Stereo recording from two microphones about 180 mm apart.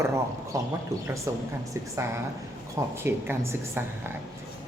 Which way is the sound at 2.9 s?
15° right (ahead or behind).